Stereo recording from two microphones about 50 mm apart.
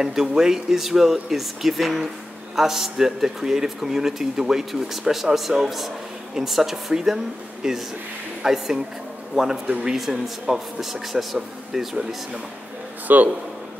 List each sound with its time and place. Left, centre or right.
0.0 s speech: centre
13.1 s speech: right